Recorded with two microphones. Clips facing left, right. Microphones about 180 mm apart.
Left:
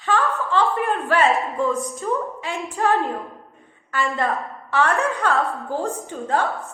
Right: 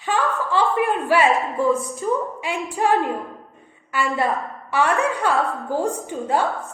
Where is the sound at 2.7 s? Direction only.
15° right (ahead or behind).